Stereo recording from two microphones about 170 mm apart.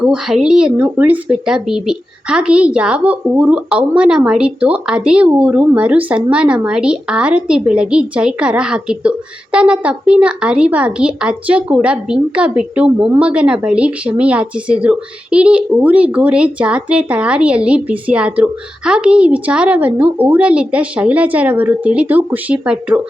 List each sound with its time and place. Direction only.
0.0 s speech: 5° right (ahead or behind)